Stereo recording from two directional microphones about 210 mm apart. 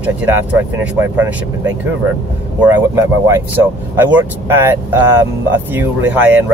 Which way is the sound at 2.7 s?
15° right (ahead or behind).